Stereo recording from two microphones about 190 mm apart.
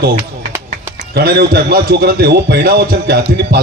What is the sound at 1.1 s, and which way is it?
A man's voice, 55° right (ahead or behind).